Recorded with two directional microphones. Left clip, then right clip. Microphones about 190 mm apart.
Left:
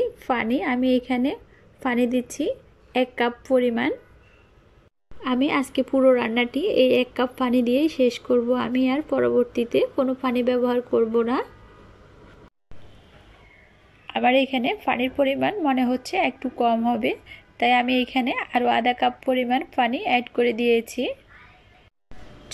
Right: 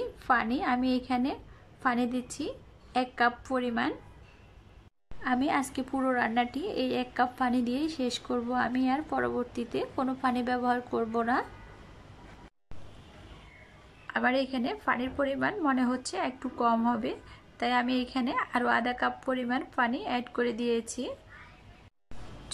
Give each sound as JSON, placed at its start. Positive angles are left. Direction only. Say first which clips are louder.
{"t": 0.0, "sound": "a woman's voice", "louder": "left 4 dB", "side_deg": 10}
{"t": 5.2, "sound": "a woman's voice", "louder": "left 5 dB", "side_deg": 5}
{"t": 14.0, "sound": "a sound", "louder": "left 7 dB", "side_deg": 10}
{"t": 14.4, "sound": "a woman's voice", "louder": "left 8 dB", "side_deg": 10}